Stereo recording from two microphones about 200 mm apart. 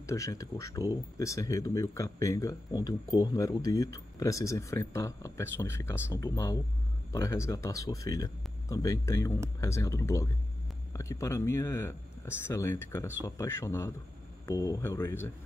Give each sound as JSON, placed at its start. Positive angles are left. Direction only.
{"t": 0.0, "sound": "speech", "side_deg": 15}